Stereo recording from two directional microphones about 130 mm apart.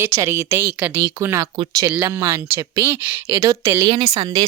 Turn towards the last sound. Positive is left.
turn(degrees=-30)  # may be behind; listen again after turning